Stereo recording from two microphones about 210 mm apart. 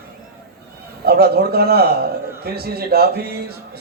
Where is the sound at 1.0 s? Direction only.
50° right (ahead or behind).